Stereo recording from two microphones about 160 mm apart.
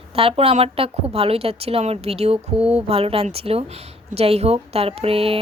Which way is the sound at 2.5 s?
5° right (ahead or behind).